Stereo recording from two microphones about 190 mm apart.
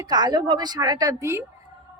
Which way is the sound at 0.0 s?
20° right (ahead or behind).